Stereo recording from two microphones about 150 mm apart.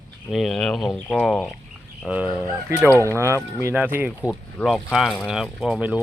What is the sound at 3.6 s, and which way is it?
Speech, 15° right (ahead or behind).